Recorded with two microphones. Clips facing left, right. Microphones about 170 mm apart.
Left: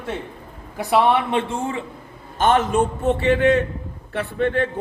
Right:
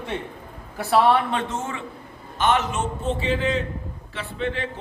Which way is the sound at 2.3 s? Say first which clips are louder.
Left 5 dB; 50° left (ahead or behind).